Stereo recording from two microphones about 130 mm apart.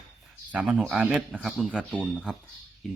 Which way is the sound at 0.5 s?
10° right (ahead or behind).